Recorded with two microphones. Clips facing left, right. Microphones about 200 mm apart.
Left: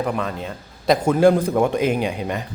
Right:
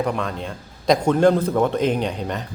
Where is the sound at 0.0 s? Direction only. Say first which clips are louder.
Even; 5° left (ahead or behind).